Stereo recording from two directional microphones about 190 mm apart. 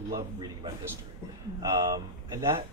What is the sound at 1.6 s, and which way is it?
Speech, 20° right (ahead or behind).